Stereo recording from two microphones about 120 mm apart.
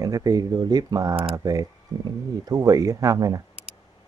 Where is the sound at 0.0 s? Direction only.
30° right (ahead or behind).